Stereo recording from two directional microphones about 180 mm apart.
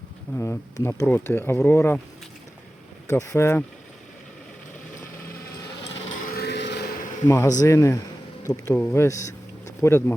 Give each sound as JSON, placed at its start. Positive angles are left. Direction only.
{"t": 0.3, "sound": "speech", "side_deg": 15}
{"t": 3.1, "sound": "speech", "side_deg": 15}
{"t": 6.3, "sound": "a sound", "side_deg": 65}
{"t": 7.3, "sound": "speech", "side_deg": 20}